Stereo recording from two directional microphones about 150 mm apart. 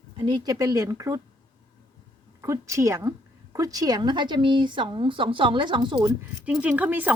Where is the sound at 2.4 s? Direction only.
20° right (ahead or behind).